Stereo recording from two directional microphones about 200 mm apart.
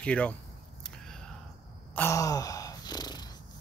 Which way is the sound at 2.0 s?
15° left (ahead or behind).